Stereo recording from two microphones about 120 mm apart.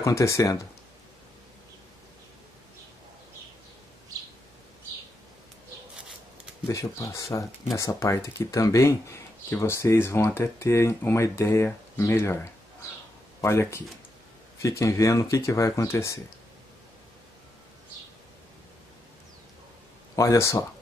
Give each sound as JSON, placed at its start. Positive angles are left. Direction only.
{"t": 0.0, "sound": "speech", "side_deg": 25}
{"t": 6.7, "sound": "speech", "side_deg": 30}
{"t": 20.2, "sound": "speech", "side_deg": 25}